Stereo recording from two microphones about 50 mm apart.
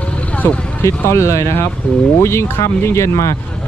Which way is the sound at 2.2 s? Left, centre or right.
Left.